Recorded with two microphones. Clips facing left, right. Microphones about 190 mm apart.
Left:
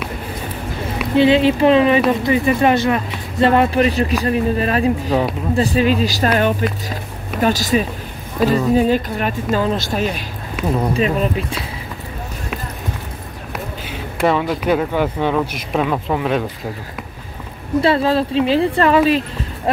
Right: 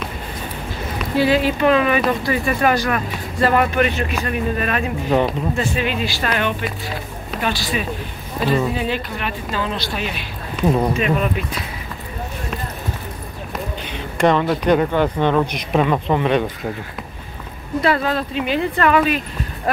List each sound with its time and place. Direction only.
1.1 s a woman's voice: 25° left (ahead or behind); by 10.2 s 40° left (ahead or behind)
11.0 s speech: 30° left (ahead or behind)
13.8 s speech: 5° left (ahead or behind)
17.7 s speech: 30° left (ahead or behind)